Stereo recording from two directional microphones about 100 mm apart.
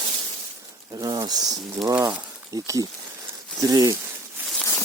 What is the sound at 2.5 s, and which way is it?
Speech, 40° right (ahead or behind).